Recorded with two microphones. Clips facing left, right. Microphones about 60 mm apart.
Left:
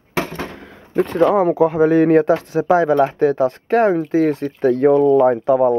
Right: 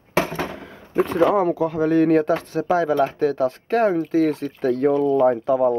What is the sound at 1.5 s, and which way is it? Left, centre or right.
Speech, left.